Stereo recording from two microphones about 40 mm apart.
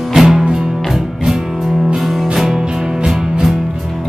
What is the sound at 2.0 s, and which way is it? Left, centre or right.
Music, centre.